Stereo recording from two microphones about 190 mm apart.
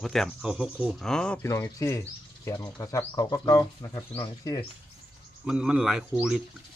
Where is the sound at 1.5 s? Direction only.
15° left (ahead or behind).